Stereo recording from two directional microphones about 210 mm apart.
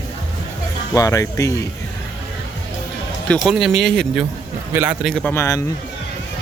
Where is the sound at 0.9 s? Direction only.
15° left (ahead or behind).